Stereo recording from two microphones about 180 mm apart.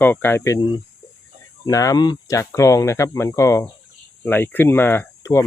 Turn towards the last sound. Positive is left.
turn(degrees=15)  # may be behind; listen again after turning